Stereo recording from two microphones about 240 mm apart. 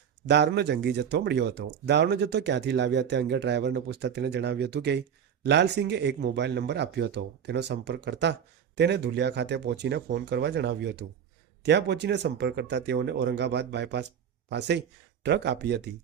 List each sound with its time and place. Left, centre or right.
0.3 s speech: right